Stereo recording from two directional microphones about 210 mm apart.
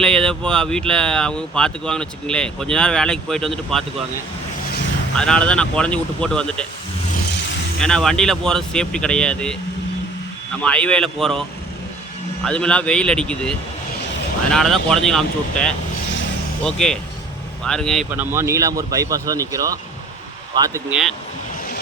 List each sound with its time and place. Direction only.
0.0 s speech: 5° left (ahead or behind)
5.1 s speech: 5° left (ahead or behind)
7.8 s speech: 5° left (ahead or behind)
10.6 s speech: 5° left (ahead or behind)
12.5 s speech: 5° left (ahead or behind)
18.1 s speech: 10° right (ahead or behind)
20.9 s speech: centre (ahead or behind)